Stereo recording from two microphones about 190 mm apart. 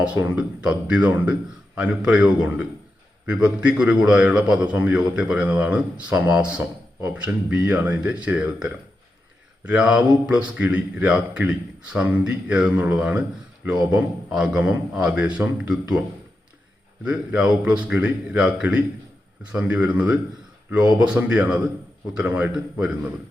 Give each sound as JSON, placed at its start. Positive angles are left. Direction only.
{"t": 0.0, "sound": "a man's voice", "side_deg": -10}
{"t": 20.7, "sound": "speech", "side_deg": -20}
{"t": 21.0, "sound": "a man's voice", "side_deg": -5}